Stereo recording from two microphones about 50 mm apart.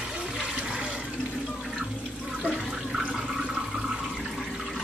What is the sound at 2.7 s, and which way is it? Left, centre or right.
Toilet flush, centre.